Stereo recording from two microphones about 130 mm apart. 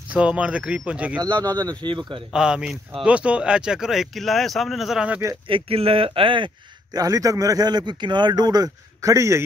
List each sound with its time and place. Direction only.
0.1 s speech: 10° right (ahead or behind)
1.4 s speech: 30° right (ahead or behind)
2.3 s speech: 5° right (ahead or behind)
5.5 s speech: 45° right (ahead or behind); by 9.4 s 25° right (ahead or behind)